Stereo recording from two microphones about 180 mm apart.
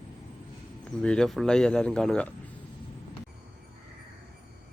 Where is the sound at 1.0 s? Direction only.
5° left (ahead or behind).